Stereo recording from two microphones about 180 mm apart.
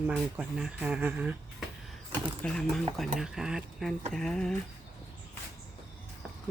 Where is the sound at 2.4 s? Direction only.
5° left (ahead or behind).